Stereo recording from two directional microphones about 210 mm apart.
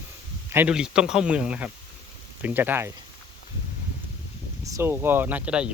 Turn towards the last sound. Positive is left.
turn(degrees=-5)  # may be behind; listen again after turning